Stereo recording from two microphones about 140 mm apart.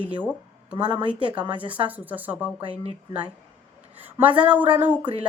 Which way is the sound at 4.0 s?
10° right (ahead or behind).